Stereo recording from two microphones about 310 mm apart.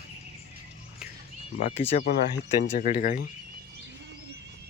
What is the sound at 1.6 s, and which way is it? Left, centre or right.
Speech, left.